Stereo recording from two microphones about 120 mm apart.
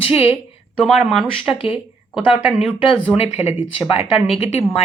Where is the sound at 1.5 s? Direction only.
45° left (ahead or behind).